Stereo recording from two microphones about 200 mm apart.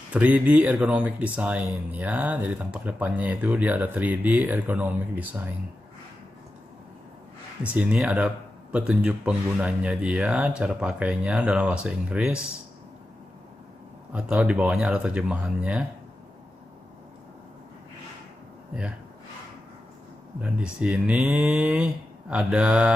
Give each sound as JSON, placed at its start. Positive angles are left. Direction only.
{"t": 0.1, "sound": "speech", "side_deg": -5}
{"t": 7.7, "sound": "speech", "side_deg": -5}
{"t": 14.1, "sound": "speech", "side_deg": -5}
{"t": 18.7, "sound": "speech", "side_deg": -5}
{"t": 20.4, "sound": "speech", "side_deg": -5}